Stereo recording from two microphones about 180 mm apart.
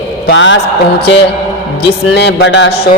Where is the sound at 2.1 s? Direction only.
70° left (ahead or behind).